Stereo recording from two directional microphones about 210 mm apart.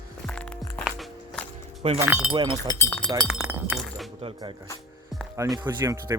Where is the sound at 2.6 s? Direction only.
10° left (ahead or behind).